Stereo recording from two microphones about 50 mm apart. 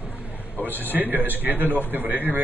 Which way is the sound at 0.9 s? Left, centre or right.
Right.